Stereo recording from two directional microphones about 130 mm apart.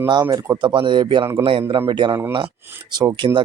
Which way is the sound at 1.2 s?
20° right (ahead or behind).